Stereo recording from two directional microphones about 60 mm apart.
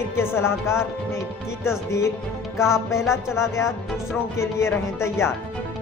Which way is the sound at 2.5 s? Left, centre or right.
Left.